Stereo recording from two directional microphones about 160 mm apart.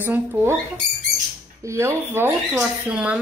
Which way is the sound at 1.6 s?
15° right (ahead or behind).